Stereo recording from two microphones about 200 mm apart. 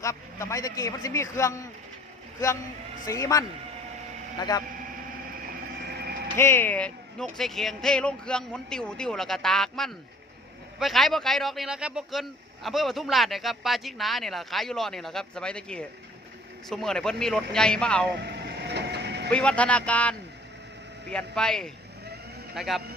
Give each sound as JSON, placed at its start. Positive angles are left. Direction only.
{"t": 0.0, "sound": "a man's voice", "side_deg": 15}
{"t": 3.1, "sound": "a man's voice", "side_deg": 15}
{"t": 5.8, "sound": "vehicle", "side_deg": -55}
{"t": 6.3, "sound": "speech", "side_deg": 10}
{"t": 18.2, "sound": "vehicle", "side_deg": -55}
{"t": 19.3, "sound": "a man's voice", "side_deg": 5}